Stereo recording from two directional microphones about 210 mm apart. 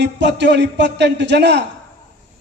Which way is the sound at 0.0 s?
55° right (ahead or behind).